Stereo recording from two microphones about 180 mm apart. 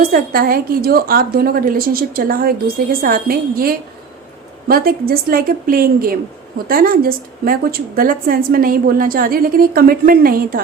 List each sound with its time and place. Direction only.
0.0 s a woman's voice: 55° right (ahead or behind)